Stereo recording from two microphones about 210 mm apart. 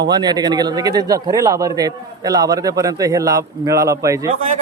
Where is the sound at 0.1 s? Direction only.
20° right (ahead or behind).